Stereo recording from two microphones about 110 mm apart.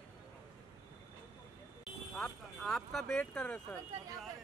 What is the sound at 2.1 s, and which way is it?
Speech, 5° left (ahead or behind).